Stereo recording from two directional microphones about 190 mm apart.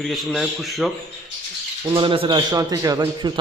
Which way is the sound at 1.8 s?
25° right (ahead or behind).